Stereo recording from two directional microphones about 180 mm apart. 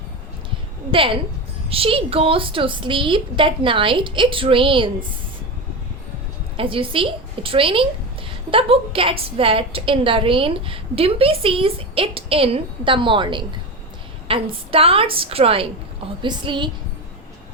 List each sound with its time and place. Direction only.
0.9 s a woman's voice: 30° right (ahead or behind)
6.6 s a woman's voice: 30° right (ahead or behind)